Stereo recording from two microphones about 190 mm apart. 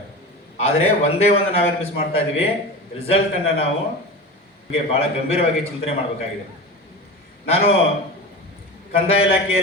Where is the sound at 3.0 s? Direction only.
30° left (ahead or behind).